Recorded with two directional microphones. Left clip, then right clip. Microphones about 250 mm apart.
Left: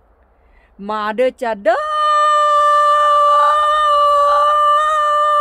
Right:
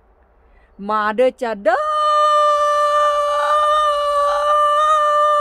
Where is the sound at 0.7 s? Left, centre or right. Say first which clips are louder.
Right 1 dB; centre.